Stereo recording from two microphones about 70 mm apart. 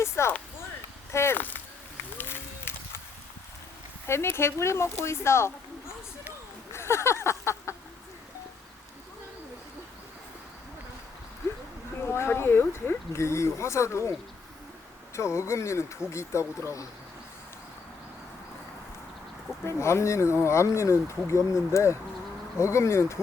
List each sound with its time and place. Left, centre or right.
0.0 s speech: left
1.4 s speech: left
2.1 s run: left
4.0 s speech: left
6.7 s a sound: left
12.0 s speech: left
15.1 s speech: left
19.6 s speech: left